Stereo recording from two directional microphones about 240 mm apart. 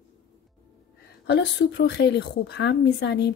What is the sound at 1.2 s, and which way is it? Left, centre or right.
Speech, left.